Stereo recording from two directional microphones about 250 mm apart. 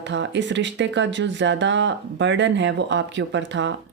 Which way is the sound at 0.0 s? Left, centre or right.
Right.